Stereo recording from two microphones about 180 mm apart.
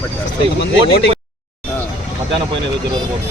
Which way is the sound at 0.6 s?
70° left (ahead or behind).